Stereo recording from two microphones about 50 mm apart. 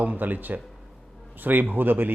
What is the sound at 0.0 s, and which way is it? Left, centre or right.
Speech, right.